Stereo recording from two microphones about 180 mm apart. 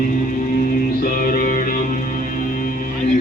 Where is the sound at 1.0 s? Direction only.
50° left (ahead or behind).